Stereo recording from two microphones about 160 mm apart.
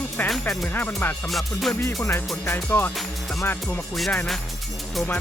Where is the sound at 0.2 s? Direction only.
10° left (ahead or behind).